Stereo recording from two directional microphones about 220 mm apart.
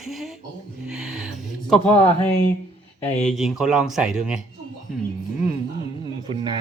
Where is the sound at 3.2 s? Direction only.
Centre (ahead or behind).